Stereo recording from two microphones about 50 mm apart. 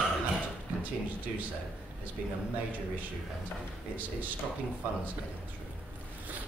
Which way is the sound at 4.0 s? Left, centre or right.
Right.